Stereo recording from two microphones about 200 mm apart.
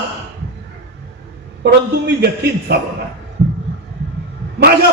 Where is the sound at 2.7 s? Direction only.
55° right (ahead or behind).